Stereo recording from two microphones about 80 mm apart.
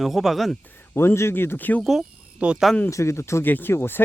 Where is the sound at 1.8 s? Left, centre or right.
Centre.